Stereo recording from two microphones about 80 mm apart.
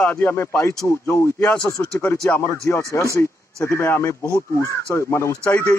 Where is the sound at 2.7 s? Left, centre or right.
Left.